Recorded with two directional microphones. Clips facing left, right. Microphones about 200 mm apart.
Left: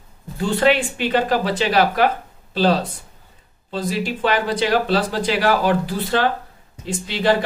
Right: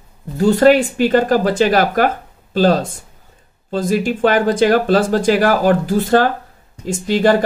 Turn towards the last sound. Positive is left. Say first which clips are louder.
# right 5 dB
turn(degrees=-45)  # may be behind; listen again after turning